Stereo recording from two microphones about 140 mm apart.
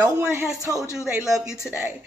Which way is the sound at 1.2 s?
5° right (ahead or behind).